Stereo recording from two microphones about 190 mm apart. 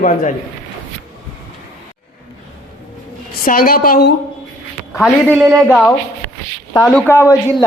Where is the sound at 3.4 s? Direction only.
50° left (ahead or behind).